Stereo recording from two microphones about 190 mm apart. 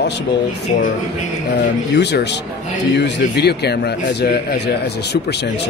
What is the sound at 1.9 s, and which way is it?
Speech, 60° left (ahead or behind).